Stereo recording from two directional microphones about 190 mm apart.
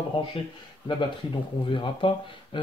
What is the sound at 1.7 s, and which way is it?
Speech, 25° left (ahead or behind).